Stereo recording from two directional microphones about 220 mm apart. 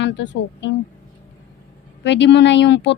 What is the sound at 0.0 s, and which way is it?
Speech, 55° left (ahead or behind).